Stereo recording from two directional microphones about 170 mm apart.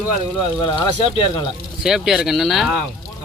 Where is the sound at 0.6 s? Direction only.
30° left (ahead or behind).